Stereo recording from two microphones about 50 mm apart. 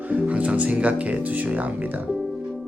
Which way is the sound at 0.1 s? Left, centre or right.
Right.